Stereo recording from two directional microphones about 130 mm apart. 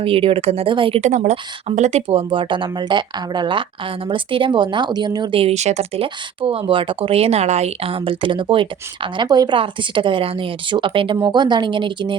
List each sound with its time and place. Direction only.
0.0 s speech: 45° right (ahead or behind)
1.0 s speech: 65° right (ahead or behind); by 5.4 s 35° right (ahead or behind)
5.4 s speech: 55° right (ahead or behind); by 12.1 s 40° right (ahead or behind)